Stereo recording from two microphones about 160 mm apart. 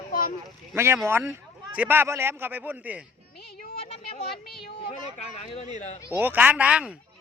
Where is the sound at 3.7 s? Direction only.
35° left (ahead or behind).